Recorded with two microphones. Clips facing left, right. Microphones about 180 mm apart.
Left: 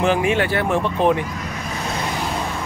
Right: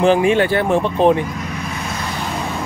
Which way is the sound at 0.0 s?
30° right (ahead or behind).